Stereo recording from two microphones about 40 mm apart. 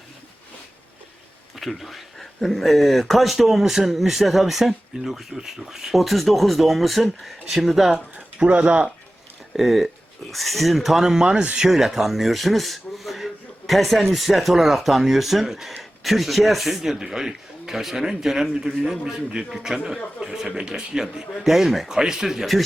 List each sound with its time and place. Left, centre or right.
1.5 s speech: centre
8.4 s speech: right
9.5 s speech: centre
11.0 s speech: centre
21.8 s speech: centre